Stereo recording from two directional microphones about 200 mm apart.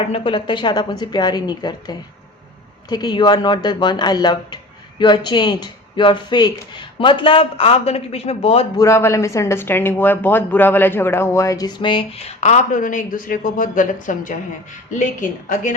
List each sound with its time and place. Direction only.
0.1 s speech: 25° left (ahead or behind)
8.8 s a woman's voice: 15° left (ahead or behind); by 15.7 s 40° left (ahead or behind)